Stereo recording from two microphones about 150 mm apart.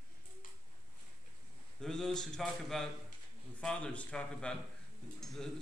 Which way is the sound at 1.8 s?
5° left (ahead or behind).